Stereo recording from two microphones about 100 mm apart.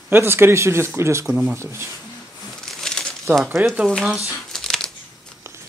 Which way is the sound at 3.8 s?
Centre (ahead or behind).